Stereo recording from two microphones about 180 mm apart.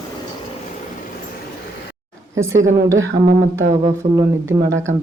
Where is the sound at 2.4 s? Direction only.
15° right (ahead or behind).